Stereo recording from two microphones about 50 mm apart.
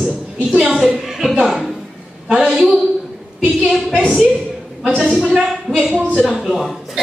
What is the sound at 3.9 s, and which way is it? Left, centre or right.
A woman's voice, right.